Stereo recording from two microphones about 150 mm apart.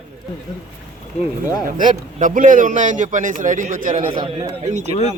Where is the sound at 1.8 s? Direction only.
60° right (ahead or behind).